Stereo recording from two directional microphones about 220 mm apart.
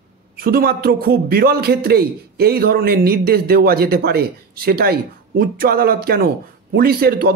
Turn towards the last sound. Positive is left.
turn(degrees=-45)  # may be behind; listen again after turning